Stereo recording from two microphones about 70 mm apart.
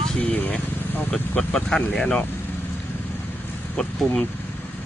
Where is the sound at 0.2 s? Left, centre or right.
Centre.